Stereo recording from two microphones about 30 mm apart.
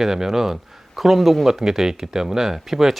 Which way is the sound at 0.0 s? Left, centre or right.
Centre.